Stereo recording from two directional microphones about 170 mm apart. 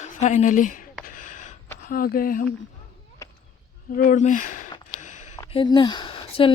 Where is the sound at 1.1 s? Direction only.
50° left (ahead or behind).